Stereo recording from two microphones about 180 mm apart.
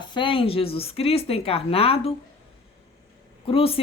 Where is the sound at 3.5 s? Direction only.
30° left (ahead or behind).